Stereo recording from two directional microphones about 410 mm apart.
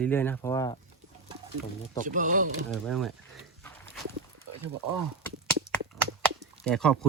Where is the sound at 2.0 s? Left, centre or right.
Centre.